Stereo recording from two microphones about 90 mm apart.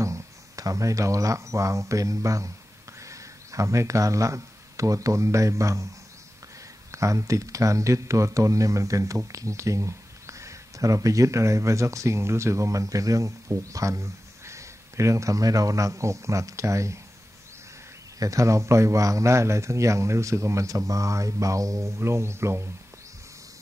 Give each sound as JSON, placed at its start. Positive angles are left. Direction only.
{"t": 0.0, "sound": "speech", "side_deg": -40}
{"t": 6.9, "sound": "speech", "side_deg": -35}
{"t": 18.2, "sound": "speech", "side_deg": -35}